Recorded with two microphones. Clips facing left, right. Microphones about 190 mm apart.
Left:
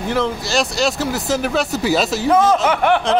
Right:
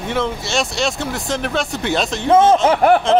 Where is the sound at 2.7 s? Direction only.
40° right (ahead or behind).